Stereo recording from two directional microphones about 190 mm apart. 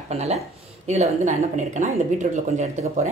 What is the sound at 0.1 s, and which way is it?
Speech, 35° right (ahead or behind).